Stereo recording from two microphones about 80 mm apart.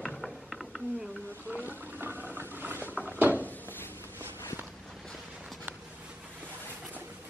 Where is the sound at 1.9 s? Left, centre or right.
Right.